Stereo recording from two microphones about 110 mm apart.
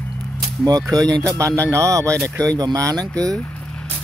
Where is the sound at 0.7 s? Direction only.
35° right (ahead or behind).